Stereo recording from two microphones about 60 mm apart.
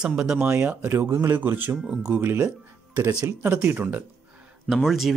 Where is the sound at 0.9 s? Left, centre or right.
Right.